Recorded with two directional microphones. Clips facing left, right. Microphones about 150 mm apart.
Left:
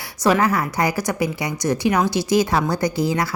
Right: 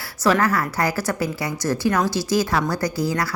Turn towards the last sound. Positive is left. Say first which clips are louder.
# left 2 dB
turn(degrees=20)  # may be behind; listen again after turning